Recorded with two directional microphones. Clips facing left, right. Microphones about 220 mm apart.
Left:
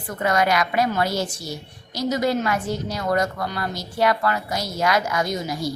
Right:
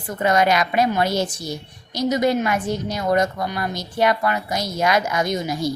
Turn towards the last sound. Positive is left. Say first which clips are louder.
# right 3 dB
turn(degrees=-20)  # may be behind; listen again after turning